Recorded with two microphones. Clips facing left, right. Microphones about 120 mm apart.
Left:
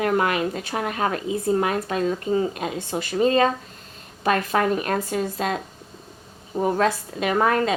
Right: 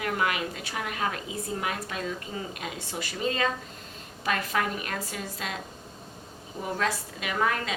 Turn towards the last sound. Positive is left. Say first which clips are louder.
# left 8 dB
turn(degrees=40)  # may be behind; listen again after turning